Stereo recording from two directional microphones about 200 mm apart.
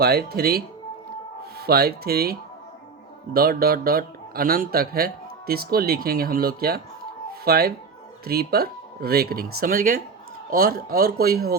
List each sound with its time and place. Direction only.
0.0 s speech: 50° right (ahead or behind)
3.3 s speech: 50° right (ahead or behind)